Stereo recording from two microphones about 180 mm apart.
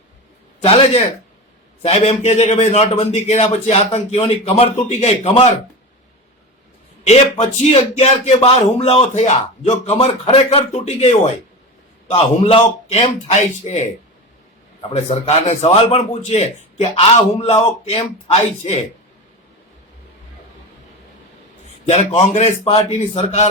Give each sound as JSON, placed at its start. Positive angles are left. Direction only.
{"t": 0.6, "sound": "a man's voice", "side_deg": 30}
{"t": 7.0, "sound": "speech", "side_deg": 35}
{"t": 21.8, "sound": "speech", "side_deg": 35}